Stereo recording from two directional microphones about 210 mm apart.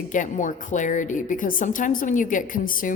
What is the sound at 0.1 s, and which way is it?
A woman's voice, 35° left (ahead or behind).